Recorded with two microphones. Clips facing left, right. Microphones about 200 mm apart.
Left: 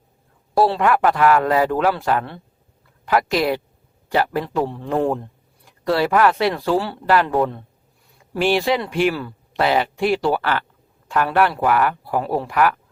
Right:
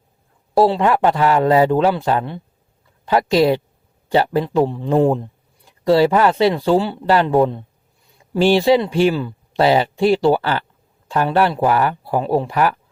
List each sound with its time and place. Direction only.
0.5 s speech: 20° right (ahead or behind)